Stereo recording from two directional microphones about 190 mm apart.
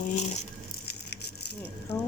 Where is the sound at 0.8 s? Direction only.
60° left (ahead or behind).